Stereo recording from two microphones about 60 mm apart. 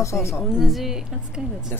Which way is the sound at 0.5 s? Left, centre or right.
Centre.